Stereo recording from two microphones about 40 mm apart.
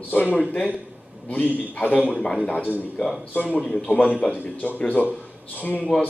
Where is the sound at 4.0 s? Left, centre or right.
Left.